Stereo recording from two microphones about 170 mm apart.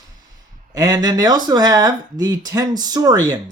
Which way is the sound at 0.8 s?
20° right (ahead or behind).